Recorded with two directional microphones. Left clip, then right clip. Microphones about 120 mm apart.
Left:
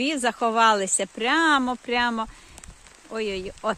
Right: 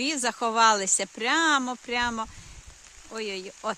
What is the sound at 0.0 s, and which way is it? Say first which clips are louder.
Speech: left 4 dB; 10° right (ahead or behind).